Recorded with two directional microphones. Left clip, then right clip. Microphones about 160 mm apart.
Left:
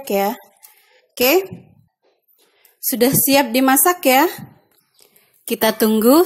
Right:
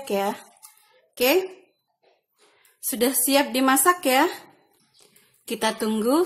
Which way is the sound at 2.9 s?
35° left (ahead or behind).